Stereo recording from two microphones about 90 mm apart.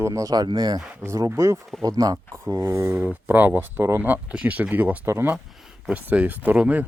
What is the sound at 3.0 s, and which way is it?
Speech, 20° right (ahead or behind).